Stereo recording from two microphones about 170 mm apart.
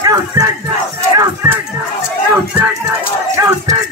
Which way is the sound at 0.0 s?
20° right (ahead or behind).